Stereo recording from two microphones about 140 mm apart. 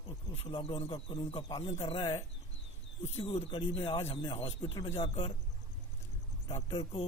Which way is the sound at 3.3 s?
40° left (ahead or behind).